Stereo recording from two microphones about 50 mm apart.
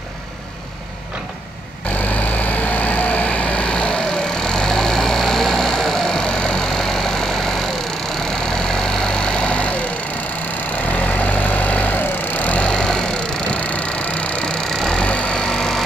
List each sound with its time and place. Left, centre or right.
2.0 s vehicle: left; by 7.6 s centre
8.8 s vehicle: centre
11.0 s vehicle: left
15.0 s vehicle: left